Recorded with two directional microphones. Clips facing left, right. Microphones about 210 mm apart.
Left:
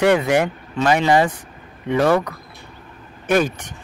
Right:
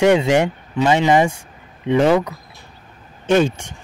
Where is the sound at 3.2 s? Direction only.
25° right (ahead or behind).